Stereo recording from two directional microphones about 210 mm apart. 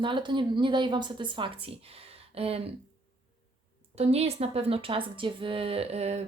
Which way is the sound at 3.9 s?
30° right (ahead or behind).